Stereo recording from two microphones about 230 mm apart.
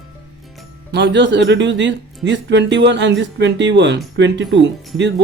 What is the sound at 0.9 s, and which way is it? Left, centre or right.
Speech, right.